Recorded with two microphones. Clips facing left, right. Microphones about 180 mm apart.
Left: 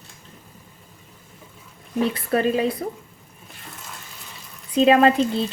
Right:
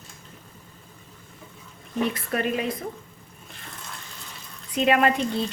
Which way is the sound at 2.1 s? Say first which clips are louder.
Left 5 dB; 30° left (ahead or behind).